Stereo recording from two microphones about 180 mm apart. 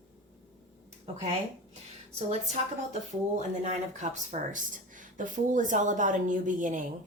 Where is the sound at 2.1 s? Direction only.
40° right (ahead or behind).